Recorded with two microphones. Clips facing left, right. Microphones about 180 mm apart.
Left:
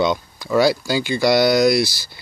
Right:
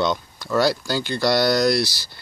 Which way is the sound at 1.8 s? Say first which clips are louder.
Left 3 dB; 50° left (ahead or behind).